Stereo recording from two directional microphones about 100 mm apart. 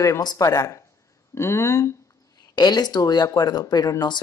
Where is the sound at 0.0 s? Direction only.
35° left (ahead or behind).